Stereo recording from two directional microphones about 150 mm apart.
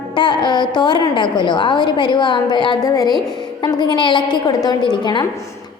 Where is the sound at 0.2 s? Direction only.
30° left (ahead or behind).